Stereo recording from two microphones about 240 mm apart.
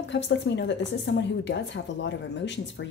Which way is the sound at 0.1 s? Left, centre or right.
Left.